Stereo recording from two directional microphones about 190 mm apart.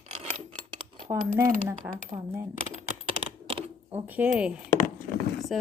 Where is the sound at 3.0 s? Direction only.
25° right (ahead or behind).